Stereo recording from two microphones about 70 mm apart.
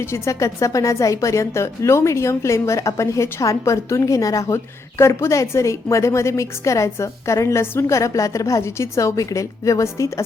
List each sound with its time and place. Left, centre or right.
0.0 s a woman's voice: left